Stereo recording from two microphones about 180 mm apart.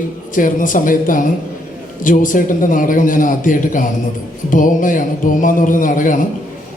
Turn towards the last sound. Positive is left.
turn(degrees=50)  # may be behind; listen again after turning